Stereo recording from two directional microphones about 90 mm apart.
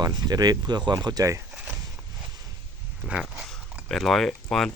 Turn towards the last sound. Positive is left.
turn(degrees=5)  # may be behind; listen again after turning